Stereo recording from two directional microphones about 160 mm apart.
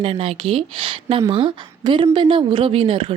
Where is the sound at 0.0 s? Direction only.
35° right (ahead or behind).